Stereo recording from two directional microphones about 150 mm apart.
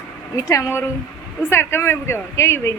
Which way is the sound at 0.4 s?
15° left (ahead or behind).